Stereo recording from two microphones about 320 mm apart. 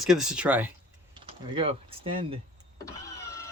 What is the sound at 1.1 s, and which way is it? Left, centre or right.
Speech, centre.